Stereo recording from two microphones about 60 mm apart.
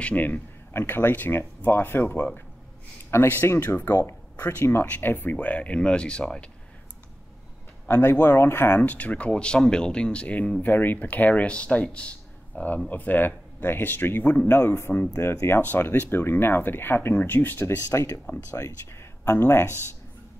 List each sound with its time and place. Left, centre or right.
0.0 s speech: left
4.4 s speech: left; by 6.5 s centre
7.9 s speech: left
8.6 s speech: left
17.6 s speech: left